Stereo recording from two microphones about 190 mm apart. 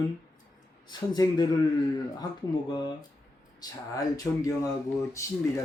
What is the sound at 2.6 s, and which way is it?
Speech, 20° left (ahead or behind).